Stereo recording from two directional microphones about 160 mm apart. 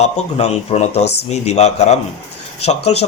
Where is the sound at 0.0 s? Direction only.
40° left (ahead or behind).